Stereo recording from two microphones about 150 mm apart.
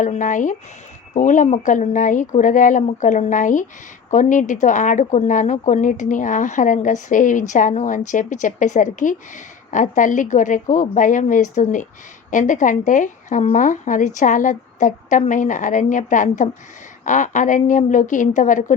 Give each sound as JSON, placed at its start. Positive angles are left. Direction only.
{"t": 0.0, "sound": "speech", "side_deg": 55}